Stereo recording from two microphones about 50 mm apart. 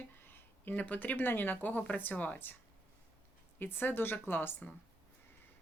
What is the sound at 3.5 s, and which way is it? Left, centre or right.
Speech, left.